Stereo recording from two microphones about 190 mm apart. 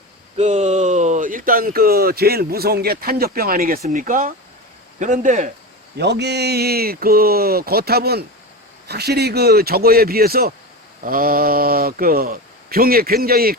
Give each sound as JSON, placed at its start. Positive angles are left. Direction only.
{"t": 0.3, "sound": "speech", "side_deg": -35}
{"t": 6.0, "sound": "speech", "side_deg": -60}